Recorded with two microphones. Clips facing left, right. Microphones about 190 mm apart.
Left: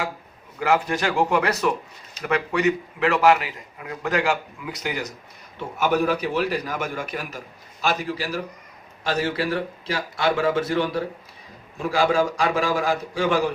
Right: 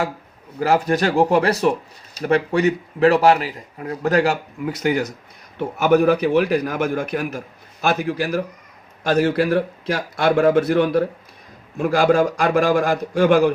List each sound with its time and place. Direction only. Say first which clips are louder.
0.6 s a man's voice: right 4 dB; 35° right (ahead or behind)
4.7 s a man's voice: right 8 dB; 55° right (ahead or behind)